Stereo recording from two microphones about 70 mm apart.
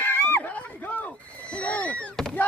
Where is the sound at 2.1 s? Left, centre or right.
Centre.